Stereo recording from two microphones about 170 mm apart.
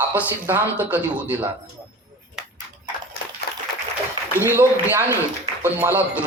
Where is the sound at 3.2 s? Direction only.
70° left (ahead or behind).